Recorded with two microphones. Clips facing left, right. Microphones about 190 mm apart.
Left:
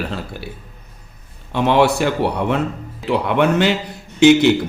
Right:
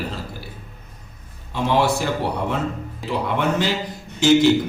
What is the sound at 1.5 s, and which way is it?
A man's voice, 65° left (ahead or behind).